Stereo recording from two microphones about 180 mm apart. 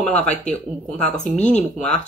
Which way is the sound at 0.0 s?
5° left (ahead or behind).